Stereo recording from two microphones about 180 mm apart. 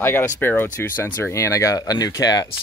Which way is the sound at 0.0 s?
10° left (ahead or behind).